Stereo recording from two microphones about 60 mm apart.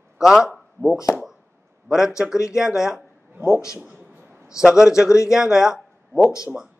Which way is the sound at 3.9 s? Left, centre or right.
Right.